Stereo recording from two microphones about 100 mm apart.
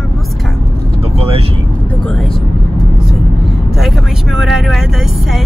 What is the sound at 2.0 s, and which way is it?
Vehicle, 5° left (ahead or behind).